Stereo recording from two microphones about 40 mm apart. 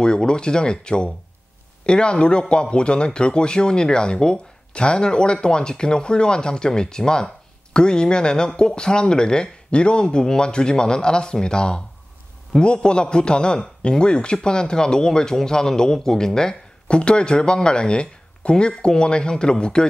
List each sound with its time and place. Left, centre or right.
0.0 s speech: left